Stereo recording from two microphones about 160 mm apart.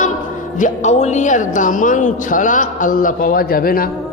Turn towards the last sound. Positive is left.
turn(degrees=65)  # may be behind; listen again after turning